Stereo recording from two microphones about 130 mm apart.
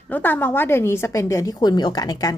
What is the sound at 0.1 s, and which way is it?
A woman's voice, 15° left (ahead or behind).